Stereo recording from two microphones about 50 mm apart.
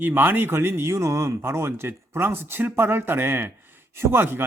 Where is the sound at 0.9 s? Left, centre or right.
Right.